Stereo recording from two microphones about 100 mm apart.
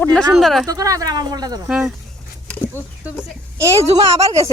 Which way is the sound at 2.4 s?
15° left (ahead or behind).